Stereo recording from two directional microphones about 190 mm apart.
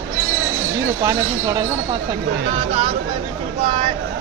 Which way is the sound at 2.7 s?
30° right (ahead or behind).